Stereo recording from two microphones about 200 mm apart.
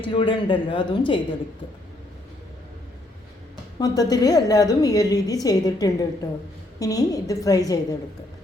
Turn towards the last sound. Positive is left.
turn(degrees=15)  # may be behind; listen again after turning